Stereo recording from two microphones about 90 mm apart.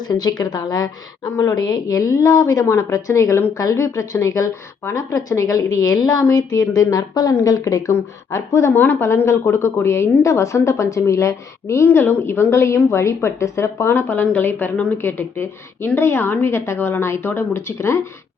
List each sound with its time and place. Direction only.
0.0 s a woman's voice: 45° left (ahead or behind)
8.7 s a woman's voice: 20° left (ahead or behind)